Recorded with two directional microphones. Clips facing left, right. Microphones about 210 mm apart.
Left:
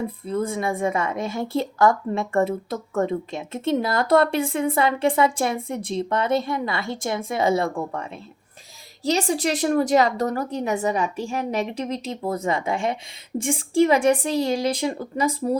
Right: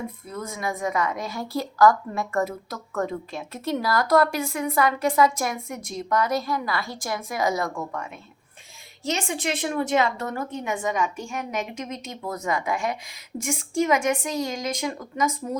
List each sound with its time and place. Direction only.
0.3 s a woman's voice: 30° left (ahead or behind)
9.0 s a woman's voice: 35° left (ahead or behind)